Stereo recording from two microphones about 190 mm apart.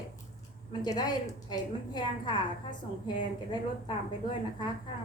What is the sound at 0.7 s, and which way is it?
A woman's voice, 20° left (ahead or behind).